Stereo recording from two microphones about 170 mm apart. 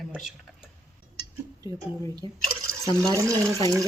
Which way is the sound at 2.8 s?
20° right (ahead or behind).